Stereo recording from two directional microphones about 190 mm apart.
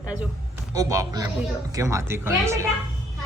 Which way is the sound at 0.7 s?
20° right (ahead or behind).